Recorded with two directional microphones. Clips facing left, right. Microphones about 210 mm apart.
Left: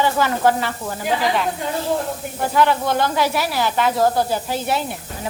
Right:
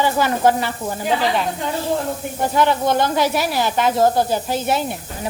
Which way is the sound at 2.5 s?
20° right (ahead or behind).